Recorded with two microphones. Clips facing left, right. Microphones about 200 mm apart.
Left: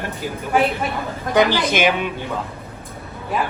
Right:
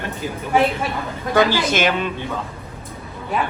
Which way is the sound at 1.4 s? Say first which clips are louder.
Left 1 dB; 20° left (ahead or behind).